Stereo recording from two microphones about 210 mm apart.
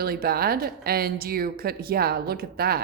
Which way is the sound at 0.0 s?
45° right (ahead or behind).